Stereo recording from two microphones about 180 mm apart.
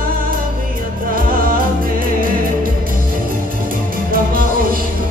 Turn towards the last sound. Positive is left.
turn(degrees=-50)  # may be behind; listen again after turning